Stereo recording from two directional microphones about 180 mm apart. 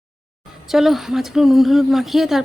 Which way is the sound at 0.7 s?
Centre (ahead or behind).